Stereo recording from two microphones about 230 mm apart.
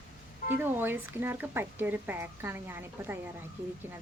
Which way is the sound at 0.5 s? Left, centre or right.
Centre.